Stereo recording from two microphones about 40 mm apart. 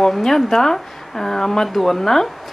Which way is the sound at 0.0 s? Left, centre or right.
Centre.